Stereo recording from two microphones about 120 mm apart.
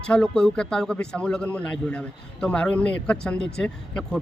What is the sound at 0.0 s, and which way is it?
A man's voice, 10° left (ahead or behind).